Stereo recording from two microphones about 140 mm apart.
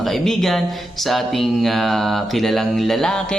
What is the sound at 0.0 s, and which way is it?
Speech, centre (ahead or behind).